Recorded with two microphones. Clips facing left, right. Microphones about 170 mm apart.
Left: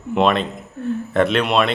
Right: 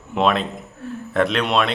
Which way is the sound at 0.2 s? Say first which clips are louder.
Left 1 dB; centre (ahead or behind).